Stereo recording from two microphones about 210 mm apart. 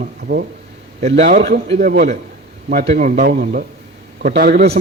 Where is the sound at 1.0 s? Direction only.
35° right (ahead or behind).